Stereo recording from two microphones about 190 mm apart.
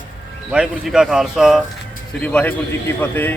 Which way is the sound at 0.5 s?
5° right (ahead or behind).